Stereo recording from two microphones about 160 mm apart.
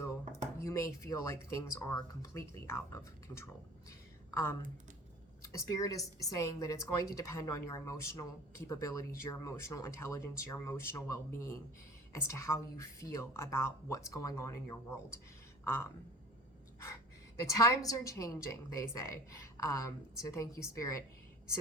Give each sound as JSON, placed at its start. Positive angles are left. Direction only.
{"t": 0.6, "sound": "speech", "side_deg": 20}
{"t": 5.4, "sound": "speech", "side_deg": 20}
{"t": 17.4, "sound": "speech", "side_deg": 20}